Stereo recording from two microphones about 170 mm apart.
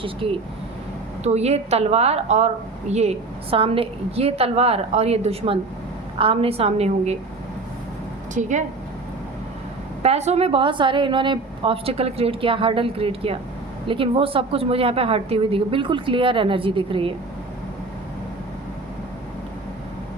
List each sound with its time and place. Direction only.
0.2 s a woman's voice: 35° right (ahead or behind)
8.4 s speech: 45° right (ahead or behind)
10.0 s a woman's voice: 40° right (ahead or behind)